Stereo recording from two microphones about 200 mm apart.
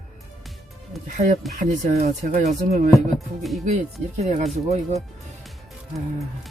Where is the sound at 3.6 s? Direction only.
35° right (ahead or behind).